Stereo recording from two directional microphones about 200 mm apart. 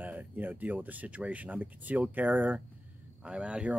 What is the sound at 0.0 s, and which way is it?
Speech, 10° right (ahead or behind).